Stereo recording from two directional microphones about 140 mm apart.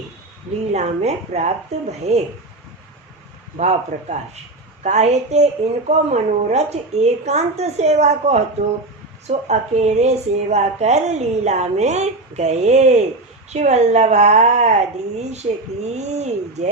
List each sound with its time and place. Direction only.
0.7 s a woman's voice: 55° right (ahead or behind)
3.6 s a woman's voice: 55° right (ahead or behind)